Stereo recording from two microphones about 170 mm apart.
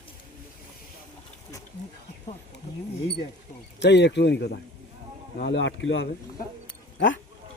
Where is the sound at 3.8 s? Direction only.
90° left.